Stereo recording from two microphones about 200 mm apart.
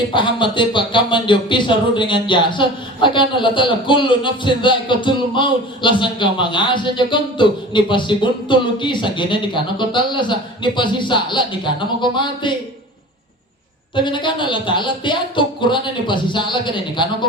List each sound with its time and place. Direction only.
0.1 s speech: 25° left (ahead or behind)
13.9 s speech: 25° left (ahead or behind)